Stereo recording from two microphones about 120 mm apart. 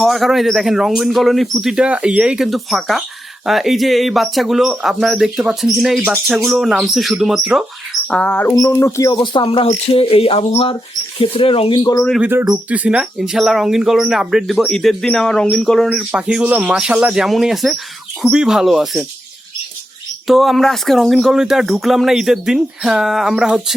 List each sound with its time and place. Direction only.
0.0 s speech: centre (ahead or behind)
8.1 s a sound: 10° left (ahead or behind)
8.5 s speech: 20° left (ahead or behind)
12.2 s speech: 20° right (ahead or behind); by 19.0 s 5° right (ahead or behind)
20.2 s speech: centre (ahead or behind)